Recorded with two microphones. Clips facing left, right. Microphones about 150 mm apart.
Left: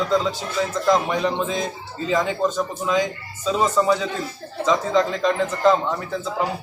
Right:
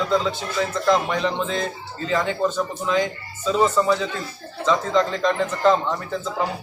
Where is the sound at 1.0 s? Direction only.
10° left (ahead or behind).